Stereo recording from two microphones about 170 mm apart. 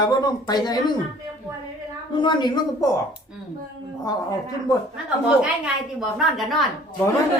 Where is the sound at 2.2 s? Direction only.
25° left (ahead or behind).